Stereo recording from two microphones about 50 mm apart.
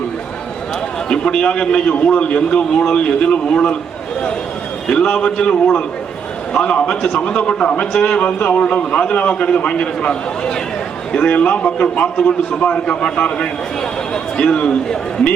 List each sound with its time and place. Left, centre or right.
1.1 s a man's voice: centre
4.9 s a man's voice: centre